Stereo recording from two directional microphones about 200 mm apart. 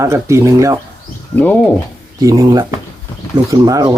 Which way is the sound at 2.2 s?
15° right (ahead or behind).